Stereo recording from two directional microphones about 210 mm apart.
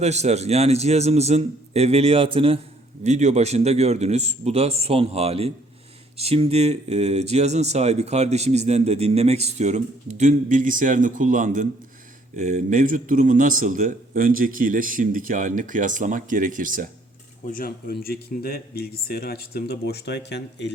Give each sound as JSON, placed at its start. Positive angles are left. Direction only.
{"t": 0.0, "sound": "a man's voice", "side_deg": -30}
{"t": 17.4, "sound": "speech", "side_deg": 40}